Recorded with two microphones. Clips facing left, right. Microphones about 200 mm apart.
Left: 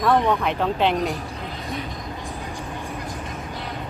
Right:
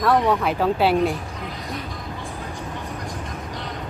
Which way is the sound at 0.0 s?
Centre (ahead or behind).